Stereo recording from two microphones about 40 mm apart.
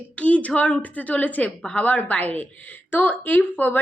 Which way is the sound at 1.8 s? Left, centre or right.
Left.